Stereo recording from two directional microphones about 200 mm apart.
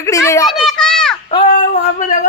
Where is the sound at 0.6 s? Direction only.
5° left (ahead or behind).